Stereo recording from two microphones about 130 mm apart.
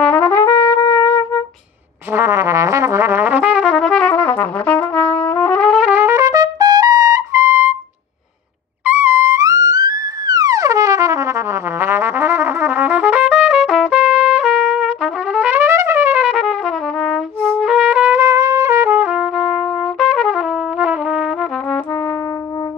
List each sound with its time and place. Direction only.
0.0 s trumpet: 10° left (ahead or behind)
2.1 s brass instrument: 20° right (ahead or behind); by 5.9 s 5° left (ahead or behind)
5.9 s trumpet: 15° right (ahead or behind)
8.8 s music: 15° right (ahead or behind); by 17.5 s centre (ahead or behind)
17.6 s trumpet: 5° right (ahead or behind)